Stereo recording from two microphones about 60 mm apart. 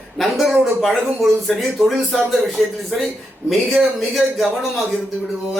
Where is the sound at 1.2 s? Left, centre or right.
Centre.